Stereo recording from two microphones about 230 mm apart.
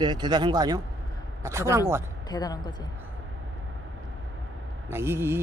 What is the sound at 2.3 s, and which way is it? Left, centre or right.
Speech, centre.